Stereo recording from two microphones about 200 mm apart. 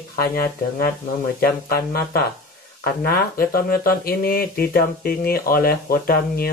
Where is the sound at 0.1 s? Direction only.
50° left (ahead or behind).